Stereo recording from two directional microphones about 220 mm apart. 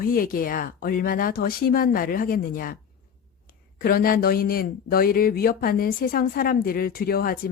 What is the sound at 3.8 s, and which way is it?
Speech, 40° left (ahead or behind).